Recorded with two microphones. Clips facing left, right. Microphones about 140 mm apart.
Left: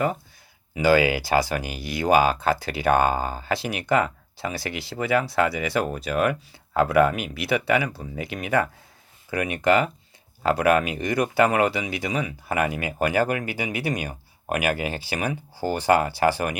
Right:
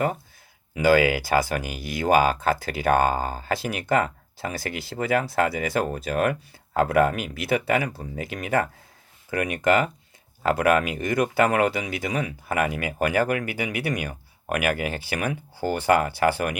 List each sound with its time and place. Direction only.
0.8 s speech: 50° right (ahead or behind)